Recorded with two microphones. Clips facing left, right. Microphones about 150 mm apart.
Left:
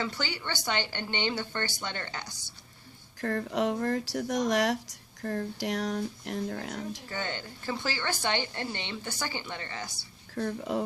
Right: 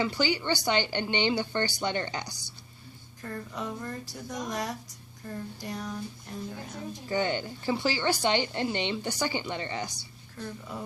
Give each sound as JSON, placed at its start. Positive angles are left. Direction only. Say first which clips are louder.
{"t": 0.0, "sound": "speech", "louder": "right 6 dB", "side_deg": -15}
{"t": 3.2, "sound": "speech", "louder": "left 8 dB", "side_deg": 70}
{"t": 7.1, "sound": "speech", "louder": "right 7 dB", "side_deg": -15}
{"t": 10.3, "sound": "speech", "louder": "left 8 dB", "side_deg": 65}